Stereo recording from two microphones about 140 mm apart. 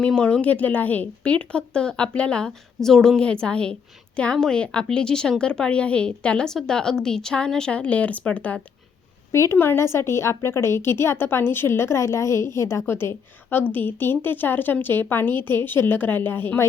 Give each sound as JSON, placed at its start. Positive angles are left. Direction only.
{"t": 0.0, "sound": "a woman's voice", "side_deg": 10}
{"t": 9.3, "sound": "a woman's voice", "side_deg": 20}